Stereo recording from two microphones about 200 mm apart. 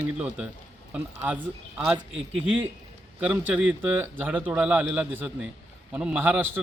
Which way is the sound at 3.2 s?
5° right (ahead or behind).